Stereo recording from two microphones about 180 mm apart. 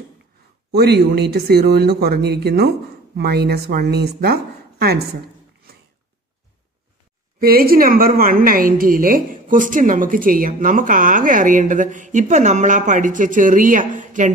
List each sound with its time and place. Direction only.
0.7 s speech: 65° right (ahead or behind)
7.3 s a woman's voice: 55° right (ahead or behind)